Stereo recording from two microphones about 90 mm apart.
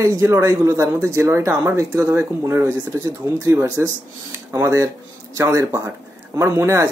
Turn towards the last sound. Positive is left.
turn(degrees=-35)  # may be behind; listen again after turning